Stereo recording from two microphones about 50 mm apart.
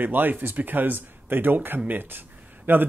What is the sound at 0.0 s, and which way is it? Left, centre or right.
Speech, right.